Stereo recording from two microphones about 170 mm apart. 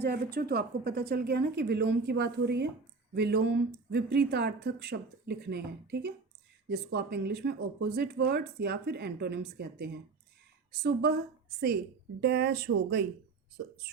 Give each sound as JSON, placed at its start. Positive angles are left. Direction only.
{"t": 0.0, "sound": "speech", "side_deg": -65}
{"t": 12.2, "sound": "speech", "side_deg": -75}